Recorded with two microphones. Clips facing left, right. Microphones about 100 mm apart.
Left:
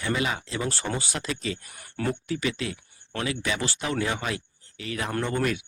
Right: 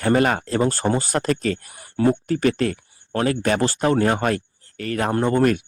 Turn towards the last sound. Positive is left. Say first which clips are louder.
# right 8 dB
turn(degrees=-45)  # may be behind; listen again after turning